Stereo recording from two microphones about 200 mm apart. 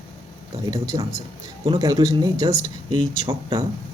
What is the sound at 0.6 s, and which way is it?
A man's voice, 20° right (ahead or behind).